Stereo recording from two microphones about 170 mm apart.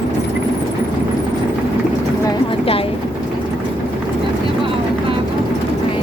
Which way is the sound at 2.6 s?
35° left (ahead or behind).